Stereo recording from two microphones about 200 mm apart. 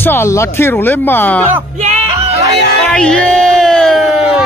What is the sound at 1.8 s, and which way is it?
Music, 35° right (ahead or behind).